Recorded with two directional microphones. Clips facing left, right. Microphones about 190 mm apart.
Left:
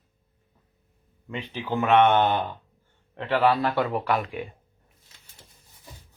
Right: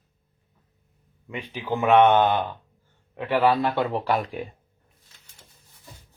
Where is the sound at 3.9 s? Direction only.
40° right (ahead or behind).